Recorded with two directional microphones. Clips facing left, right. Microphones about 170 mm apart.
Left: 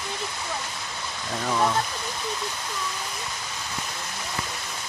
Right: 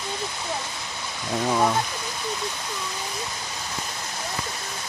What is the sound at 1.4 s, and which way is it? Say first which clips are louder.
Speech: right 2 dB; 15° right (ahead or behind).